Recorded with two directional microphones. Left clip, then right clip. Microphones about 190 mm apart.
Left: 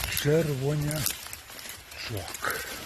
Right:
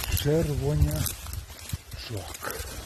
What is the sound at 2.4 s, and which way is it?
Speech, centre (ahead or behind).